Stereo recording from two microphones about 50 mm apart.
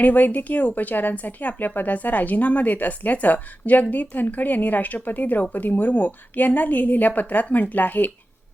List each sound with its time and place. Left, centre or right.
0.0 s a woman's voice: left